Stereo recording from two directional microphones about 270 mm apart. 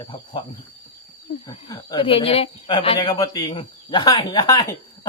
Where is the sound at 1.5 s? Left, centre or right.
Centre.